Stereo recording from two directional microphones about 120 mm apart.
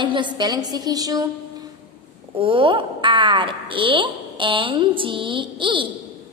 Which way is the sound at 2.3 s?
45° right (ahead or behind).